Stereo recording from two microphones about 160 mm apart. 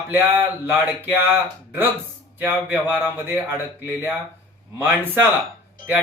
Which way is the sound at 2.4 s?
10° right (ahead or behind).